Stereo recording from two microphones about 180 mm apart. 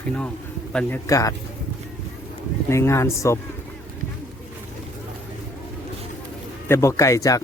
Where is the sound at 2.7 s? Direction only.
15° left (ahead or behind).